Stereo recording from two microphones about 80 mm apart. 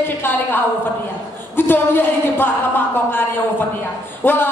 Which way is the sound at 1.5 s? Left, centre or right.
Left.